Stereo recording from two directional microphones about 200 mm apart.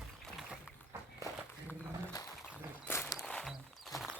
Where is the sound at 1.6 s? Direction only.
20° left (ahead or behind).